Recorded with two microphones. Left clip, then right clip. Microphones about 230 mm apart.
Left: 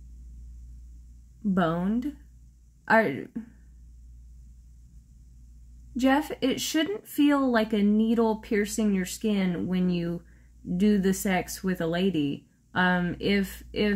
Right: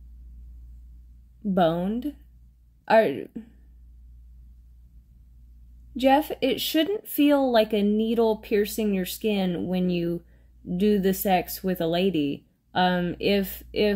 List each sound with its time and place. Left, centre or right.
1.5 s speech: centre
5.9 s speech: centre
11.2 s speech: centre